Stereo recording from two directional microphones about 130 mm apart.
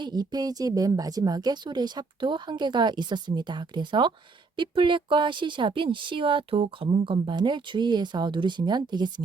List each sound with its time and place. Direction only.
0.0 s speech: 30° right (ahead or behind)